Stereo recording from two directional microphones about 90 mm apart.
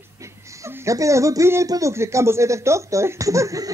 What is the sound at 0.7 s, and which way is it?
A man's voice, 35° right (ahead or behind).